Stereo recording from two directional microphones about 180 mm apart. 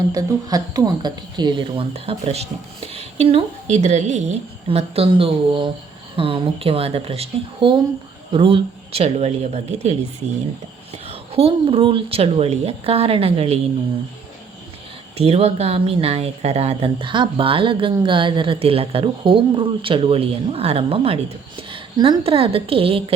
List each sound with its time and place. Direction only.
0.1 s speech: 20° right (ahead or behind); by 9.9 s 35° right (ahead or behind)
11.0 s speech: 35° right (ahead or behind)
15.2 s speech: 35° right (ahead or behind)